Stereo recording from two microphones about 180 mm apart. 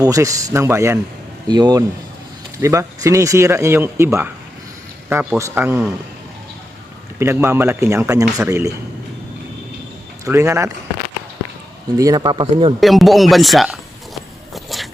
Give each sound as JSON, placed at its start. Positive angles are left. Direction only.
{"t": 0.0, "sound": "speech", "side_deg": -20}
{"t": 7.2, "sound": "speech", "side_deg": -15}
{"t": 10.2, "sound": "speech", "side_deg": -15}
{"t": 11.9, "sound": "speech", "side_deg": -20}
{"t": 12.8, "sound": "speech", "side_deg": 0}
{"t": 14.1, "sound": "walk", "side_deg": 0}